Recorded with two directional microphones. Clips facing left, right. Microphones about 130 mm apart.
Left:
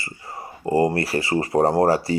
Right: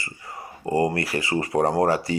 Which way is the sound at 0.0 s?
30° left (ahead or behind).